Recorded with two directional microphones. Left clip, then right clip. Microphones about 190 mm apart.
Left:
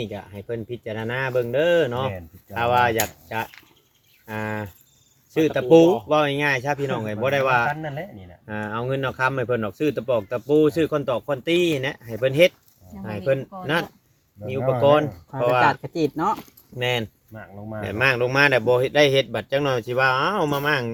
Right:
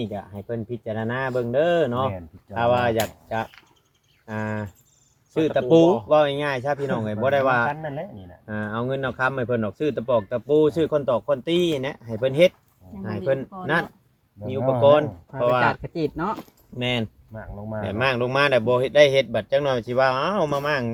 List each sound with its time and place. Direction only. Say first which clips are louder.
0.0 s speech: right 1 dB; 35° left (ahead or behind)
15.8 s speech: left 3 dB; 20° left (ahead or behind)
16.7 s speech: left 2 dB; 35° left (ahead or behind)
17.3 s speech: right 2 dB; 50° left (ahead or behind)
17.7 s speech: left 2 dB; 35° left (ahead or behind)